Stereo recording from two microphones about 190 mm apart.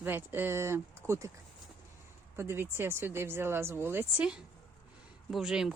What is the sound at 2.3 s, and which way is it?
Speech, 10° right (ahead or behind).